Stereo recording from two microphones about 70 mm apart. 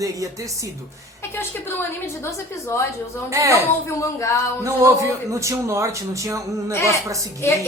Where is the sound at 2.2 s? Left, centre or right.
Left.